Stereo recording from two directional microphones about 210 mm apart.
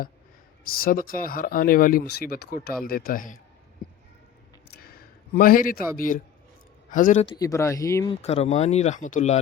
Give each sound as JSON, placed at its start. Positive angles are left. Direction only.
{"t": 0.6, "sound": "speech", "side_deg": 45}
{"t": 4.7, "sound": "a sound", "side_deg": 45}
{"t": 6.0, "sound": "speech", "side_deg": 40}
{"t": 7.3, "sound": "speech", "side_deg": 15}
{"t": 8.1, "sound": "speech", "side_deg": 30}